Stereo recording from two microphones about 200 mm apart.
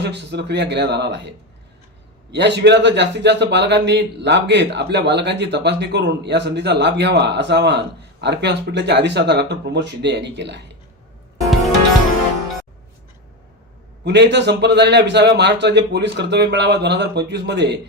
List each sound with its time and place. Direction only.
0.0 s speech: 60° right (ahead or behind)
2.3 s speech: 60° right (ahead or behind)
14.0 s speech: 60° right (ahead or behind)